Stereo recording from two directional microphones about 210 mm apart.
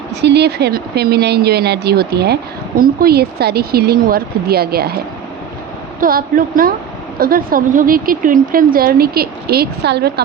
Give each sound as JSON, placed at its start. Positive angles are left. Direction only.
{"t": 0.2, "sound": "speech", "side_deg": -55}
{"t": 6.0, "sound": "speech", "side_deg": -40}